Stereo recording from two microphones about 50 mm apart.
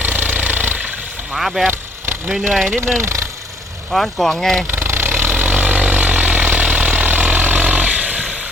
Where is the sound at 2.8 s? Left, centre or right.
Right.